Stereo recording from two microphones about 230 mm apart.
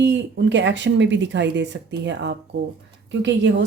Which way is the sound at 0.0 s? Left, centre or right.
Right.